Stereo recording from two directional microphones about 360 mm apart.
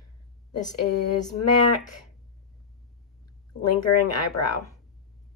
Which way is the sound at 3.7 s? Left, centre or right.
Left.